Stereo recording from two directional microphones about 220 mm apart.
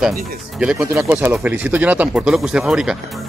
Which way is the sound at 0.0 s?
5° right (ahead or behind).